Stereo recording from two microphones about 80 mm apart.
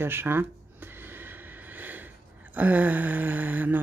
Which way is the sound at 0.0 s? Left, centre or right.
Right.